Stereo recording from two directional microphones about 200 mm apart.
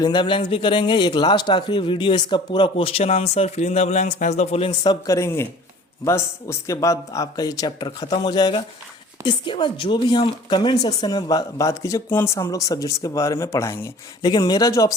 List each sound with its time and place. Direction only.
0.0 s a man's voice: 20° left (ahead or behind)